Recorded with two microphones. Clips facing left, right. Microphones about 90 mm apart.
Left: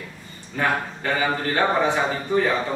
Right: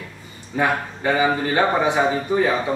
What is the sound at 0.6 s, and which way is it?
A man's voice, 10° right (ahead or behind).